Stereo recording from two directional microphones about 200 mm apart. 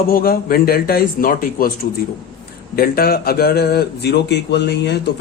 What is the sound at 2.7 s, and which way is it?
Speech, 50° left (ahead or behind).